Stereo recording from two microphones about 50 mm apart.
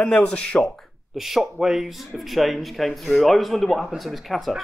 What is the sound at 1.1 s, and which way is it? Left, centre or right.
Speech, centre.